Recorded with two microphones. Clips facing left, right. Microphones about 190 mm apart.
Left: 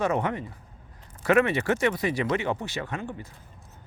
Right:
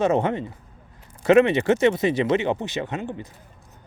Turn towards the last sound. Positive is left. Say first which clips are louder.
# right 5 dB
turn(degrees=-20)  # may be behind; listen again after turning